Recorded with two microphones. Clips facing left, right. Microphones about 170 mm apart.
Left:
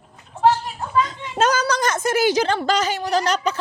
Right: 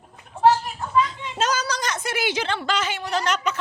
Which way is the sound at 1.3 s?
55° left (ahead or behind).